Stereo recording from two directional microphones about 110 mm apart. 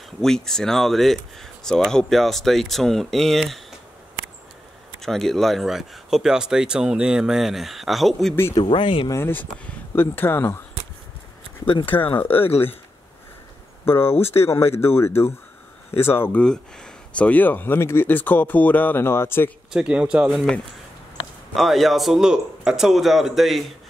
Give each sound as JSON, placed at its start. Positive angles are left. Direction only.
{"t": 0.2, "sound": "speech", "side_deg": 5}
{"t": 5.0, "sound": "speech", "side_deg": 5}
{"t": 8.6, "sound": "speech", "side_deg": 50}
{"t": 9.1, "sound": "speech", "side_deg": 20}
{"t": 11.8, "sound": "speech", "side_deg": 15}
{"t": 12.4, "sound": "speech", "side_deg": 65}
{"t": 13.8, "sound": "speech", "side_deg": 20}
{"t": 14.1, "sound": "speech", "side_deg": 70}
{"t": 14.4, "sound": "speech", "side_deg": 25}
{"t": 19.7, "sound": "speech", "side_deg": -10}
{"t": 21.5, "sound": "speech", "side_deg": 0}